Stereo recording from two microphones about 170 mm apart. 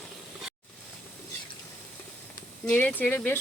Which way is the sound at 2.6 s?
5° left (ahead or behind).